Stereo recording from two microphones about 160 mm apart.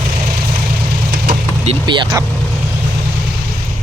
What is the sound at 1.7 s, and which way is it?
Speech, 30° right (ahead or behind).